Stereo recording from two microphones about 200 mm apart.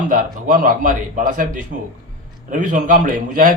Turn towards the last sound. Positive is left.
turn(degrees=-45)  # may be behind; listen again after turning